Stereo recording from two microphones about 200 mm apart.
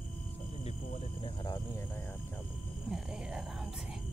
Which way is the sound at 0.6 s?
25° left (ahead or behind).